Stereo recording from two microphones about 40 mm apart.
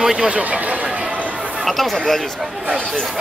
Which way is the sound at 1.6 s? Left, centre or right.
Centre.